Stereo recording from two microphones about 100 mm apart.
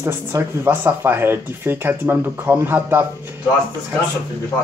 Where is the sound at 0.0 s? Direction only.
25° right (ahead or behind).